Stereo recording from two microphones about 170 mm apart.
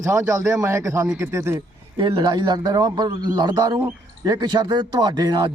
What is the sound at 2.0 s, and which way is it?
A man's voice, 25° right (ahead or behind).